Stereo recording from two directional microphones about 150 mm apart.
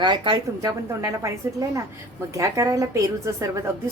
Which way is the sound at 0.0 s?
30° right (ahead or behind).